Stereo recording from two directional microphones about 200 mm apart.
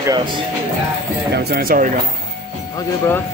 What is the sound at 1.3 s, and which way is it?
Speech, 50° right (ahead or behind).